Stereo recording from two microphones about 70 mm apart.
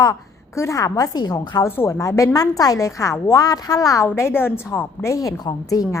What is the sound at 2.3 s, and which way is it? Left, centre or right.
Speech, left.